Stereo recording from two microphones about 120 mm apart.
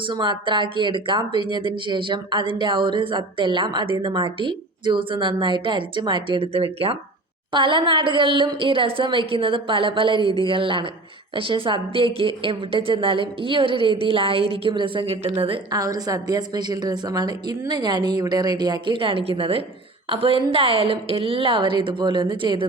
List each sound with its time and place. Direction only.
0.1 s speech: 40° right (ahead or behind)
7.5 s speech: 45° right (ahead or behind)
15.7 s speech: 30° right (ahead or behind)